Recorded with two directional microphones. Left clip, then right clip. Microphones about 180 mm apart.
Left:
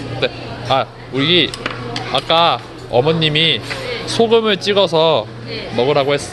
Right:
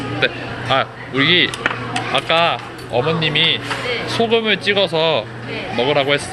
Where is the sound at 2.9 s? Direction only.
40° left (ahead or behind).